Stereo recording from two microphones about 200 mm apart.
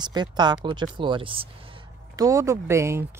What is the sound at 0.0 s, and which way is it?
Speech, 20° right (ahead or behind).